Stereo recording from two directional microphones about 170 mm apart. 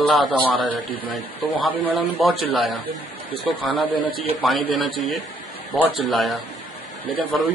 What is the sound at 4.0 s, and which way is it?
Speech, 55° left (ahead or behind).